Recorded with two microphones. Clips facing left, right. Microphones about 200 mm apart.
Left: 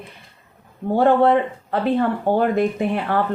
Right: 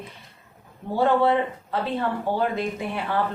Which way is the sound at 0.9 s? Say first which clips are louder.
Left 5 dB; 55° left (ahead or behind).